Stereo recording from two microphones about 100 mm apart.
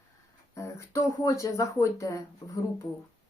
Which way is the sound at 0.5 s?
30° left (ahead or behind).